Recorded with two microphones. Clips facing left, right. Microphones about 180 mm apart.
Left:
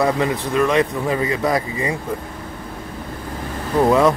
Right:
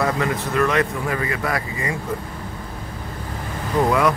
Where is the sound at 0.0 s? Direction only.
20° left (ahead or behind).